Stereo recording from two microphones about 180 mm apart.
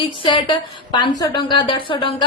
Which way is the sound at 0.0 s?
30° left (ahead or behind).